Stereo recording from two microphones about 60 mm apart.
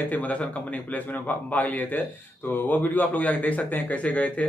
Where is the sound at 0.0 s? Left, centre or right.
Left.